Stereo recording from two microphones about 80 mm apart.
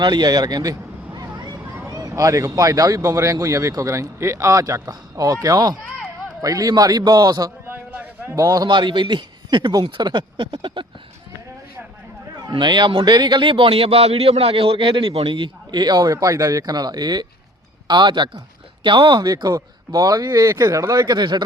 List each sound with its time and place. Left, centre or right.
0.0 s a sound: right
2.0 s speech: right
7.7 s a sound: right
8.4 s a man's voice: right
12.5 s a man's voice: right
14.8 s a man's voice: right
16.1 s speech: right
17.8 s speech: right
21.1 s a man's voice: right